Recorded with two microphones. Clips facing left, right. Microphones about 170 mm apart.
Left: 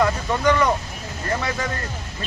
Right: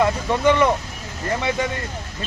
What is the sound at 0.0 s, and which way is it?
Vehicle, 25° right (ahead or behind).